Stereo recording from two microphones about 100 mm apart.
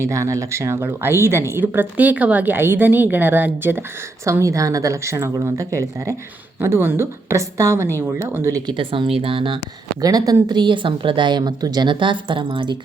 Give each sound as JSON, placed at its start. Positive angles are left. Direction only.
{"t": 0.0, "sound": "speech", "side_deg": -30}
{"t": 8.6, "sound": "speech", "side_deg": -55}
{"t": 10.0, "sound": "speech", "side_deg": -40}
{"t": 10.5, "sound": "a woman's voice", "side_deg": -50}